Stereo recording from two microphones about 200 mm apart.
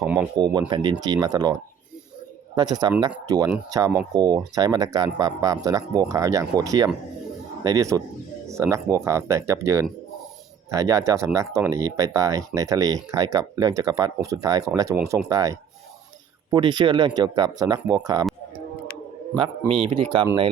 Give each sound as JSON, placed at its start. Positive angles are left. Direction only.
{"t": 0.0, "sound": "speech", "side_deg": -10}
{"t": 0.3, "sound": "speech", "side_deg": -20}
{"t": 2.6, "sound": "speech", "side_deg": -20}
{"t": 19.4, "sound": "speech", "side_deg": -25}